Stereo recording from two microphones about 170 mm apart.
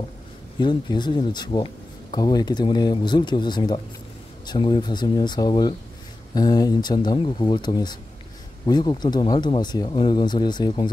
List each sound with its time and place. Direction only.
0.6 s speech: 25° left (ahead or behind)